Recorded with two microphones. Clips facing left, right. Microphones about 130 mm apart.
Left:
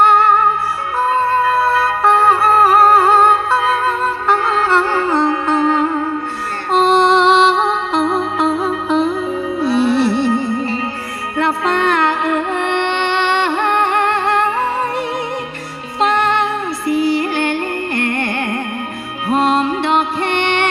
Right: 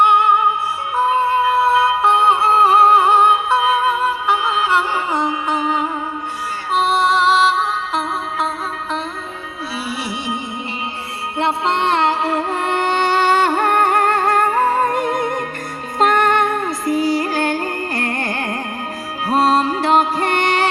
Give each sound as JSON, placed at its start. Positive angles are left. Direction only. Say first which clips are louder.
{"t": 0.2, "sound": "music", "louder": "left 2 dB", "side_deg": -15}